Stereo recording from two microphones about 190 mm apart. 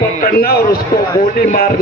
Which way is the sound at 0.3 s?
50° left (ahead or behind).